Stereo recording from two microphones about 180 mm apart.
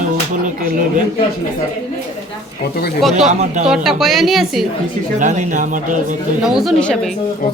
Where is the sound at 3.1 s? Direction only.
40° right (ahead or behind).